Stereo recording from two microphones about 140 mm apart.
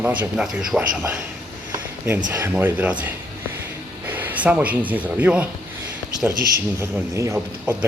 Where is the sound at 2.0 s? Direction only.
15° right (ahead or behind).